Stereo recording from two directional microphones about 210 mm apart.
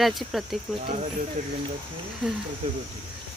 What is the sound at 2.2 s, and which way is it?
Speech, centre (ahead or behind).